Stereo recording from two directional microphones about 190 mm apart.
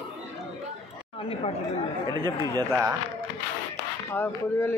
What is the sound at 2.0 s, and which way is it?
Speech, 20° left (ahead or behind).